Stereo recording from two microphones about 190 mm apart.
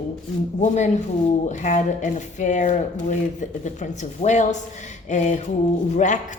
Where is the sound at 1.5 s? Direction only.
40° left (ahead or behind).